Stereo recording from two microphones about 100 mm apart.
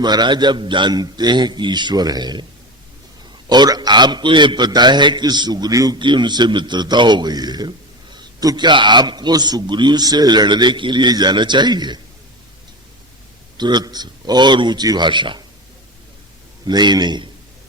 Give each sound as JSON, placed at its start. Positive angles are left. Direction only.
{"t": 0.0, "sound": "a man's voice", "side_deg": -45}
{"t": 3.5, "sound": "a man's voice", "side_deg": -45}
{"t": 13.6, "sound": "a man's voice", "side_deg": -45}
{"t": 16.6, "sound": "a man's voice", "side_deg": -45}